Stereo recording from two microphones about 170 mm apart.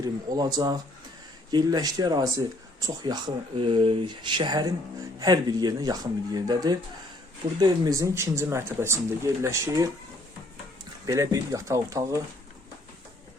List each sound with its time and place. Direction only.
0.0 s speech: 25° right (ahead or behind)
11.0 s speech: 20° right (ahead or behind)